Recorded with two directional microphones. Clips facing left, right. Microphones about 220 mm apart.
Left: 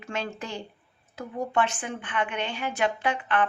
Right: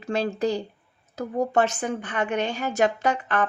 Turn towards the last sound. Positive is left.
turn(degrees=-40)  # may be behind; listen again after turning